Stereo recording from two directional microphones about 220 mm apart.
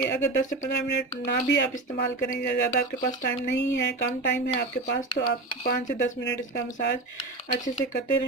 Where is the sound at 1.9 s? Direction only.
45° left (ahead or behind).